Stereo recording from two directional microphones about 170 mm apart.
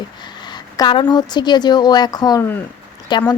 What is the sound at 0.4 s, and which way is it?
Speech, 25° left (ahead or behind).